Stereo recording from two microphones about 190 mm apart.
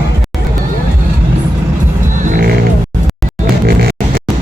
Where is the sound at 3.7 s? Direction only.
55° right (ahead or behind).